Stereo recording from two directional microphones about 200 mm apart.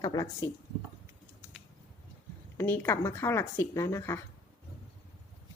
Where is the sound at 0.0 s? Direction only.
20° left (ahead or behind).